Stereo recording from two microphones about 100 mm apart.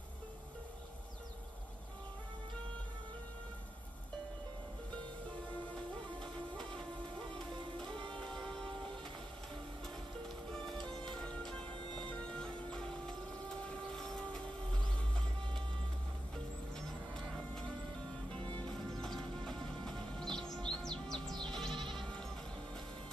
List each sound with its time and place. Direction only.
6.2 s music: 10° left (ahead or behind)
7.7 s music: 55° right (ahead or behind)
8.1 s music: 10° left (ahead or behind)
10.5 s music: 5° left (ahead or behind)
13.7 s train: 5° left (ahead or behind)
16.7 s moo: 5° left (ahead or behind)
18.4 s music: 55° right (ahead or behind)
18.7 s music: 5° left (ahead or behind)
21.5 s sheep: 5° left (ahead or behind)
21.7 s sheep: 55° right (ahead or behind)